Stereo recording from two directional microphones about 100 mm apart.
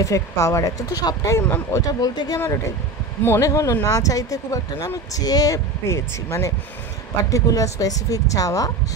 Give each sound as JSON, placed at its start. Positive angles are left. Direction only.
{"t": 0.0, "sound": "speech", "side_deg": 30}
{"t": 2.0, "sound": "speech", "side_deg": 40}